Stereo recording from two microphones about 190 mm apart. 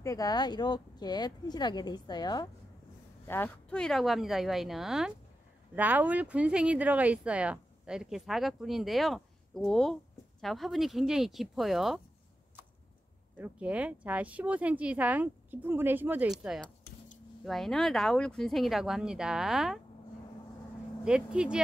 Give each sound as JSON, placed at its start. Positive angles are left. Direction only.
{"t": 0.0, "sound": "speech", "side_deg": 20}
{"t": 3.3, "sound": "speech", "side_deg": 10}
{"t": 13.4, "sound": "speech", "side_deg": -5}
{"t": 21.0, "sound": "speech", "side_deg": -5}